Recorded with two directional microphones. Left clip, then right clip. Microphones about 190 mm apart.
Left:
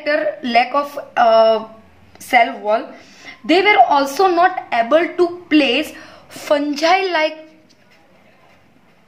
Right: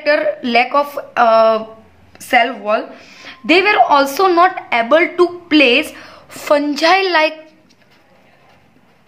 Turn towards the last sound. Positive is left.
turn(degrees=-20)  # may be behind; listen again after turning